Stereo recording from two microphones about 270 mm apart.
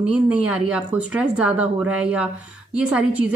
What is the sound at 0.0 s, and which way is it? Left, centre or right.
Speech, centre.